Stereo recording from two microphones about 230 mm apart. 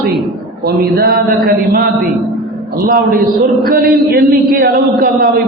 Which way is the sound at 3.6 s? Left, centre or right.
Right.